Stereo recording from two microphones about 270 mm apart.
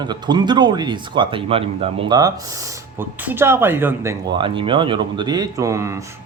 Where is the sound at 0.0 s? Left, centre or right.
Centre.